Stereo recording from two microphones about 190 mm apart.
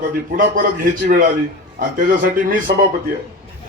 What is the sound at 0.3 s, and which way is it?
Speech, 45° right (ahead or behind).